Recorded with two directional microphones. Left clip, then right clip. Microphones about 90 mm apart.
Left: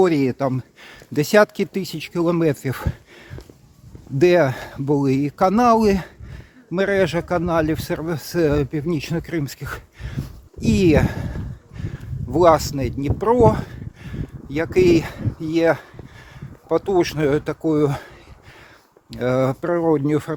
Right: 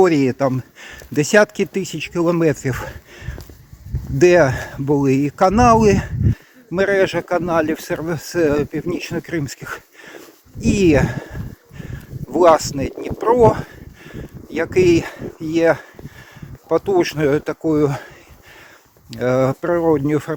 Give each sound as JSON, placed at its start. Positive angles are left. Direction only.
{"t": 0.0, "sound": "speech", "side_deg": 20}
{"t": 19.2, "sound": "speech", "side_deg": 20}